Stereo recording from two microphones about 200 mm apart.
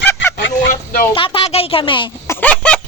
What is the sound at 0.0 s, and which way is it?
Goose, 10° left (ahead or behind).